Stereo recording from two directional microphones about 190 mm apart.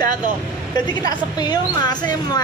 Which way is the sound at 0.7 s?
20° left (ahead or behind).